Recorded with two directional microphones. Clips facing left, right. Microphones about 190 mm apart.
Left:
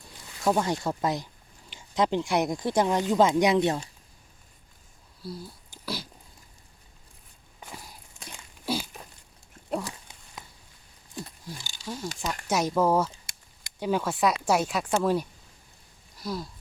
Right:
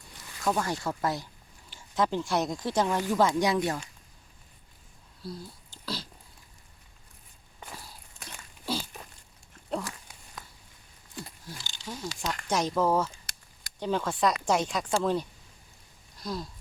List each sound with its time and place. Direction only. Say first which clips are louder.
0.4 s speech: left 4 dB; 20° left (ahead or behind)
5.2 s sniff: left 1 dB; 5° left (ahead or behind)
7.6 s walk: left 1 dB; 15° left (ahead or behind)
9.6 s dog: left 2 dB; 10° left (ahead or behind)
10.4 s a sound: left 1 dB; 25° left (ahead or behind)
11.4 s a sound: left 3 dB; 10° left (ahead or behind)
12.2 s speech: left 2 dB; 10° left (ahead or behind)